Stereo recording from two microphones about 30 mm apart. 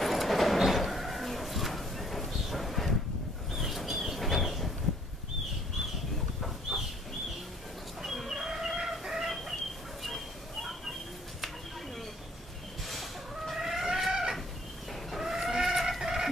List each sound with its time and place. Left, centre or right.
0.0 s vehicle: centre
3.5 s a sound: centre
6.7 s chicken: right
8.0 s dog: centre
8.3 s a sound: centre
9.0 s chicken: centre
9.3 s fowl: centre
10.0 s a sound: centre
12.8 s chicken: centre
13.6 s chicken: centre
14.9 s chicken: centre
15.5 s vehicle: centre